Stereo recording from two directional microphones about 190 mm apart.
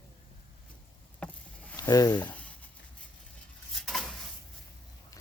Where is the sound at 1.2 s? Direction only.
10° left (ahead or behind).